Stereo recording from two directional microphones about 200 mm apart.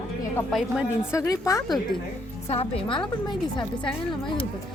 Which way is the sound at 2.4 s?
30° left (ahead or behind).